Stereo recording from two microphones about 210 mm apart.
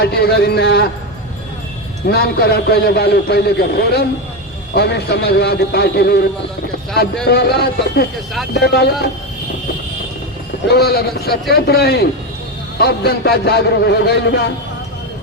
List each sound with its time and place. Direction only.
0.0 s a man's voice: 50° left (ahead or behind)
2.0 s a man's voice: 45° left (ahead or behind)
7.3 s a man's voice: 50° left (ahead or behind)
10.7 s a man's voice: 50° left (ahead or behind)